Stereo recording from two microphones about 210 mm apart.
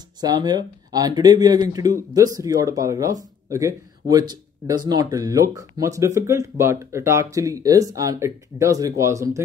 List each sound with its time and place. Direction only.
0.2 s speech: 20° right (ahead or behind)